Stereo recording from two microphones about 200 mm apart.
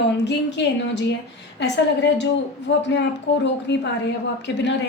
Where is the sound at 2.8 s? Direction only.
60° left (ahead or behind).